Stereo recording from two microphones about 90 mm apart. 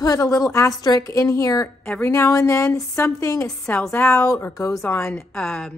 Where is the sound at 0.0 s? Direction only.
40° left (ahead or behind).